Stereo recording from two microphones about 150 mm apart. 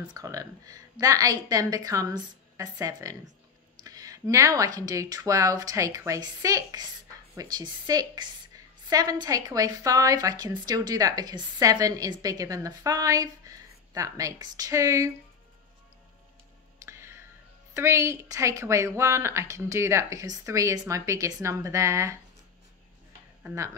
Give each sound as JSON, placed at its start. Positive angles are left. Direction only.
{"t": 0.1, "sound": "a woman's voice", "side_deg": -25}
{"t": 16.8, "sound": "a sound", "side_deg": -15}
{"t": 17.7, "sound": "a woman's voice", "side_deg": -20}
{"t": 23.4, "sound": "a woman's voice", "side_deg": -20}